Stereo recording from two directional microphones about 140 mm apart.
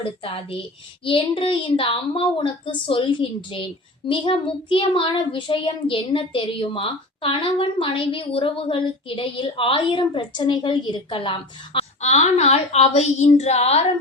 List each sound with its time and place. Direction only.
0.0 s a woman's voice: 40° left (ahead or behind)
11.9 s a woman's voice: 55° left (ahead or behind)